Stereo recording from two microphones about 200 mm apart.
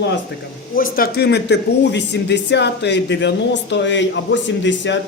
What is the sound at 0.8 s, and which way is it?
A man's voice, 45° left (ahead or behind).